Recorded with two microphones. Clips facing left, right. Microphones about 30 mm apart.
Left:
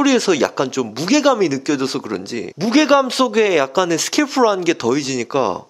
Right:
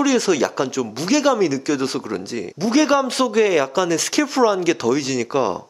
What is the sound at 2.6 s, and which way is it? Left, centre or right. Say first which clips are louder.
A man's voice: left 3 dB; left.